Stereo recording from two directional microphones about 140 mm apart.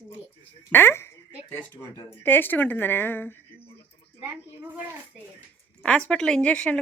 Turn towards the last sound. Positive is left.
turn(degrees=10)  # may be behind; listen again after turning